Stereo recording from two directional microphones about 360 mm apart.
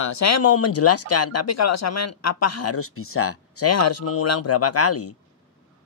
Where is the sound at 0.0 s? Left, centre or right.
Left.